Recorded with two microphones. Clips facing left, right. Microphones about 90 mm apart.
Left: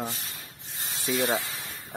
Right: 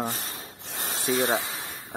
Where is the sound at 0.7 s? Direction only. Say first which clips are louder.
Right 4 dB; 60° right (ahead or behind).